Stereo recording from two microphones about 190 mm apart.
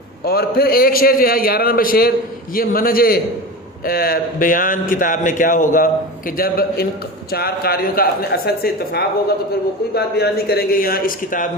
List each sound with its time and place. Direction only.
0.3 s a man's voice: 55° left (ahead or behind)